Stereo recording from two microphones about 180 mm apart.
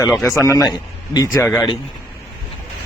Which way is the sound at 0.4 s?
15° left (ahead or behind).